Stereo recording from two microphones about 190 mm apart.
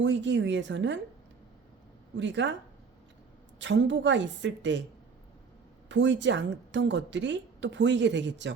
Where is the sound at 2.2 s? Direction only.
70° right (ahead or behind).